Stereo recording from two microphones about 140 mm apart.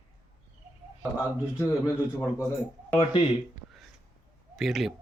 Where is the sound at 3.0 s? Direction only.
40° left (ahead or behind).